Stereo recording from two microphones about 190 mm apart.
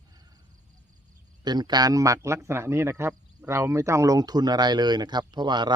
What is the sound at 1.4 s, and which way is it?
A man's voice, 20° right (ahead or behind).